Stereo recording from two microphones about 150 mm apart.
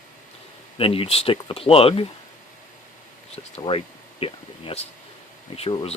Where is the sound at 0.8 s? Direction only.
40° left (ahead or behind).